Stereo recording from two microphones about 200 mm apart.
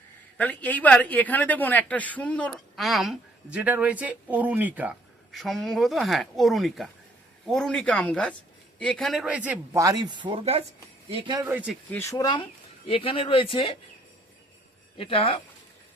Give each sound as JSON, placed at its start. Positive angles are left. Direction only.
{"t": 0.3, "sound": "speech", "side_deg": 5}
{"t": 11.4, "sound": "speech", "side_deg": -5}
{"t": 11.9, "sound": "speech", "side_deg": 15}
{"t": 14.9, "sound": "speech", "side_deg": 25}